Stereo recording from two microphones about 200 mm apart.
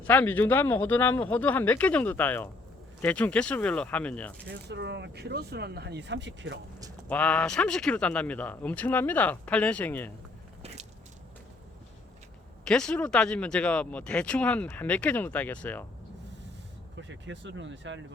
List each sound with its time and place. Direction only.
0.0 s a man's voice: 10° left (ahead or behind)
4.4 s speech: 60° right (ahead or behind)
7.1 s a man's voice: 5° left (ahead or behind)
12.6 s speech: 5° left (ahead or behind)
17.0 s speech: 65° right (ahead or behind)